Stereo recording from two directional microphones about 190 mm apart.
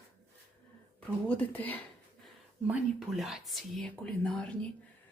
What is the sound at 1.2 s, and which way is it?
Speech, 10° left (ahead or behind).